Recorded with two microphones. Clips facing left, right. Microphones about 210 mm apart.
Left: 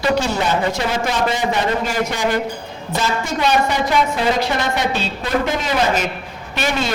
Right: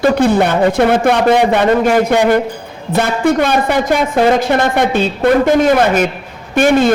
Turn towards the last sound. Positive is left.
turn(degrees=-50)  # may be behind; listen again after turning